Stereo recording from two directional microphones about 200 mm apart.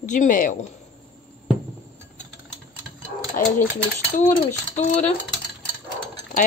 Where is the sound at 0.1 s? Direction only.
40° left (ahead or behind).